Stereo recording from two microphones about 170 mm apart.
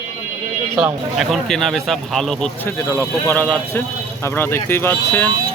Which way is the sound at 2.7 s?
15° left (ahead or behind).